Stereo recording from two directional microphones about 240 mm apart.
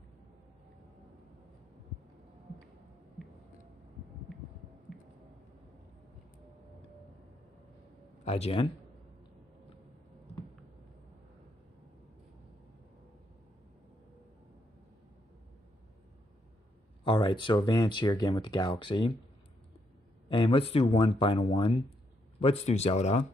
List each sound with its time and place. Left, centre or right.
4.3 s a sound: centre
8.2 s a man's voice: left
17.0 s speech: centre
20.2 s speech: left